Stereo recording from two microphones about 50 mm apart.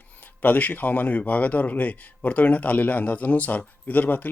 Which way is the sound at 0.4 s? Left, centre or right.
Left.